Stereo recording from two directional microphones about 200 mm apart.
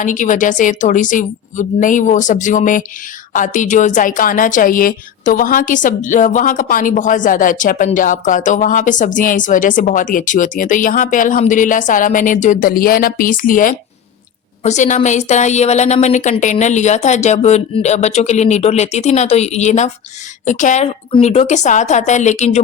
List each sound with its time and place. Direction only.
0.0 s a woman's voice: 40° left (ahead or behind)